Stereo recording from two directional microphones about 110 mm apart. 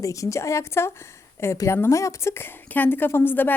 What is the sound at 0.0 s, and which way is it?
A woman's voice, 30° left (ahead or behind).